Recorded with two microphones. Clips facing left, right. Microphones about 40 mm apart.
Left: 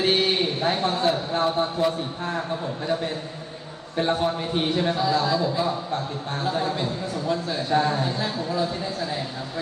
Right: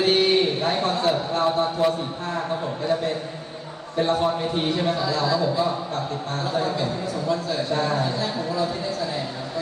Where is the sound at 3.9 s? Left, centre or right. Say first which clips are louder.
Right 2 dB; left.